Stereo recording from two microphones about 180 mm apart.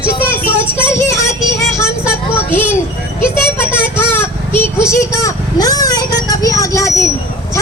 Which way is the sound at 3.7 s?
10° left (ahead or behind).